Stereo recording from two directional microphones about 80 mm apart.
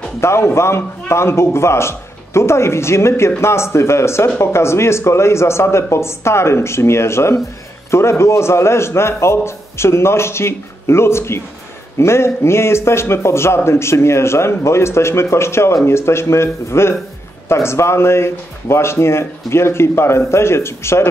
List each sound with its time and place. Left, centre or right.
0.2 s a man's voice: left